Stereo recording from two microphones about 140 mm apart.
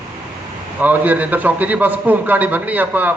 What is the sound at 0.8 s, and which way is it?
A man's voice, 10° right (ahead or behind).